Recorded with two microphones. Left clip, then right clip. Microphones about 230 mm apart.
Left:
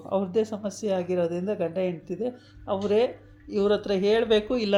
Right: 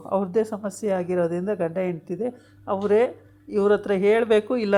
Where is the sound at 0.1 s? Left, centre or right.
Right.